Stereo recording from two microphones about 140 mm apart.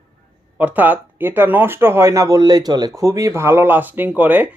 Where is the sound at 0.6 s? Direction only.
10° right (ahead or behind).